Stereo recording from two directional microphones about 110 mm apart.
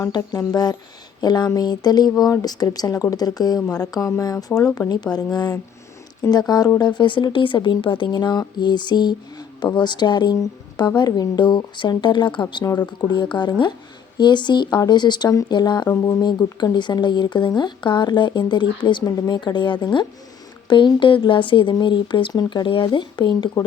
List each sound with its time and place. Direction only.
0.0 s speech: 30° left (ahead or behind)
6.7 s speech: 45° left (ahead or behind)
15.9 s speech: 25° left (ahead or behind)
16.2 s speech: 40° left (ahead or behind)